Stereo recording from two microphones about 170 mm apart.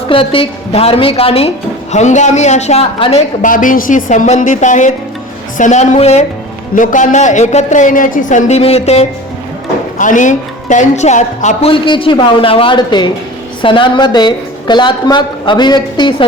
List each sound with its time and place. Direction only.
0.1 s a woman's voice: 30° left (ahead or behind)
3.5 s a woman's voice: 55° left (ahead or behind)
10.0 s a woman's voice: 50° left (ahead or behind)
11.7 s a woman's voice: 30° left (ahead or behind)